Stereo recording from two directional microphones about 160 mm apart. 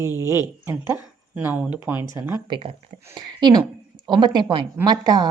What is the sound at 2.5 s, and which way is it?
Speech, 35° right (ahead or behind).